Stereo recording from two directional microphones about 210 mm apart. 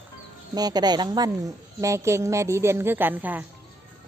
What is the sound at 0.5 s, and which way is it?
A woman's voice, 20° right (ahead or behind).